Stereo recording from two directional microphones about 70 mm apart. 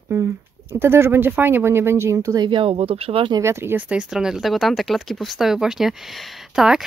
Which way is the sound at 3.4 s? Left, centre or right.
Right.